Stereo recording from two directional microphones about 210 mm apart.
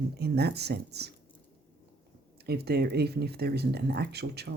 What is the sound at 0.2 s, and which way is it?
Speech, 50° right (ahead or behind).